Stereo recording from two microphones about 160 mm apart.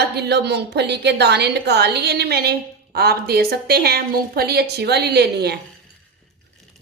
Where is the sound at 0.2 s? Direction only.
90° right.